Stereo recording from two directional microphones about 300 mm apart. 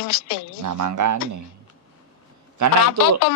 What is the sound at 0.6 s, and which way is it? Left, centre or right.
Speech, right.